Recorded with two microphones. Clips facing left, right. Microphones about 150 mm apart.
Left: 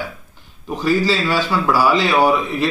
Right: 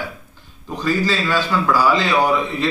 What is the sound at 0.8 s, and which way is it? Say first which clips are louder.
A man's voice: left 3 dB; 15° left (ahead or behind).